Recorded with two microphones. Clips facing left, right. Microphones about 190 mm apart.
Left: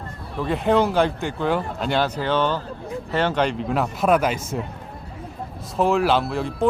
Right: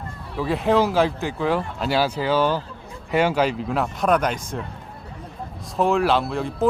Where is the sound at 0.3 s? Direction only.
Centre (ahead or behind).